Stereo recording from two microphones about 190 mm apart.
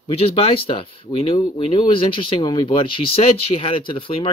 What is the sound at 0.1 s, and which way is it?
Speech, 30° left (ahead or behind).